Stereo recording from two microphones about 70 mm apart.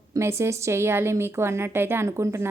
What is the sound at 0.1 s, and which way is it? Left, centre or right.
Speech, right.